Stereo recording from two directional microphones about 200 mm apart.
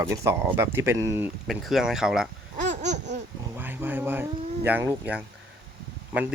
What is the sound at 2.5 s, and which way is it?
Laughter, 35° right (ahead or behind).